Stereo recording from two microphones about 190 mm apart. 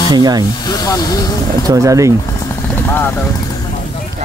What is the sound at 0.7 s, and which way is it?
Speech, 20° left (ahead or behind).